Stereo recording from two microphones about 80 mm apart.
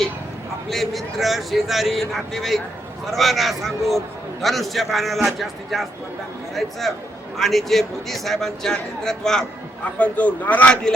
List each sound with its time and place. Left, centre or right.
0.7 s a man's voice: centre
10.0 s speech: centre